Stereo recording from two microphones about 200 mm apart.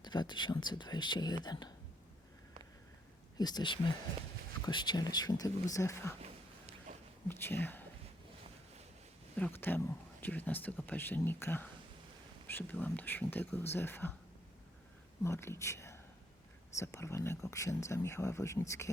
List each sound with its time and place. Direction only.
0.0 s speech: 20° left (ahead or behind)
3.3 s speech: 20° left (ahead or behind)
6.2 s a sound: 35° right (ahead or behind)
7.3 s speech: 10° left (ahead or behind)
9.3 s speech: 10° left (ahead or behind)
15.2 s speech: 10° left (ahead or behind)